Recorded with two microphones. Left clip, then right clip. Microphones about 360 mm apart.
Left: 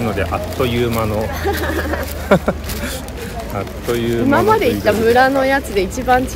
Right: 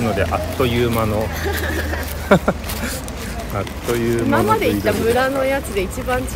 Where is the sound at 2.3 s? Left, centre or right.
Centre.